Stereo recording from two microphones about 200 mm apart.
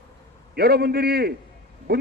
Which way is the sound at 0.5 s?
50° right (ahead or behind).